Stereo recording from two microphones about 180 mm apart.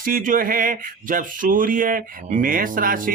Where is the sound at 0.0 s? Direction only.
50° right (ahead or behind).